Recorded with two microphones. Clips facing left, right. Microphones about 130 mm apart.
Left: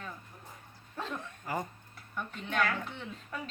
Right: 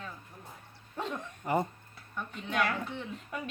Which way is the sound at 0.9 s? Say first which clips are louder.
Right 2 dB; 20° right (ahead or behind).